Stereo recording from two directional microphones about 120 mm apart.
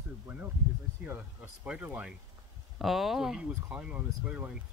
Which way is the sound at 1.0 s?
15° right (ahead or behind).